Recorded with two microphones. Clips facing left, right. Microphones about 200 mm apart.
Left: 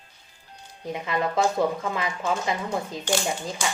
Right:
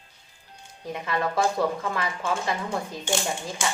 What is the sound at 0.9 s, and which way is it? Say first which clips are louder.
A woman's voice: left 1 dB; 20° left (ahead or behind).